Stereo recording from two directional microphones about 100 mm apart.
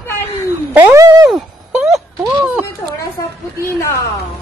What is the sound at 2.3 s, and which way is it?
Speech, 15° right (ahead or behind).